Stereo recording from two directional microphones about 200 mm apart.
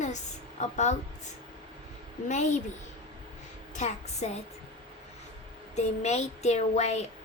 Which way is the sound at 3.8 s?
35° left (ahead or behind).